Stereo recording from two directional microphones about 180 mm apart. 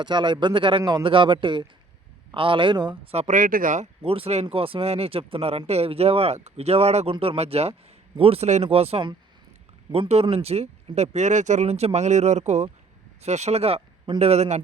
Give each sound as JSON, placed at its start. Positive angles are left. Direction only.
{"t": 0.0, "sound": "a man's voice", "side_deg": -25}